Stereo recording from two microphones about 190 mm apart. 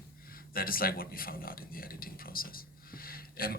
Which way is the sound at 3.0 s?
50° left (ahead or behind).